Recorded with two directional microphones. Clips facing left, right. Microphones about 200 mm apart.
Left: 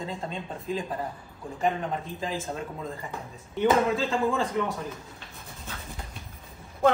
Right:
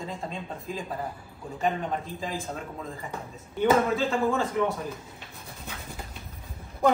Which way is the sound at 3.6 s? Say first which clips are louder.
Even; centre (ahead or behind).